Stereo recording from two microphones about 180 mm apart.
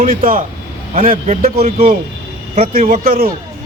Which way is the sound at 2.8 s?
45° right (ahead or behind).